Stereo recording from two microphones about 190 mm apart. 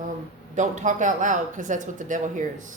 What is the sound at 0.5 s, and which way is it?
A woman's voice, 40° right (ahead or behind).